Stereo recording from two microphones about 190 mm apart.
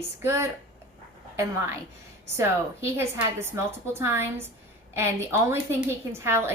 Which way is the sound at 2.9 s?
10° right (ahead or behind).